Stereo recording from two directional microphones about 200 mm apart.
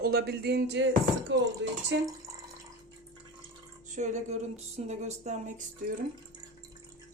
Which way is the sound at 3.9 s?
35° right (ahead or behind).